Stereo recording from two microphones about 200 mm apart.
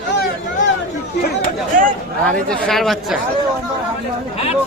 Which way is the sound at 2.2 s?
Centre (ahead or behind).